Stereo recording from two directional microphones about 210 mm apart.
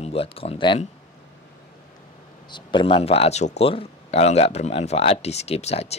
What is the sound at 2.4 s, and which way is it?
Speech, 20° left (ahead or behind).